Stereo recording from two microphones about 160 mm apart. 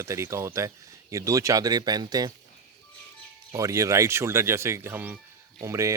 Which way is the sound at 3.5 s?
20° right (ahead or behind).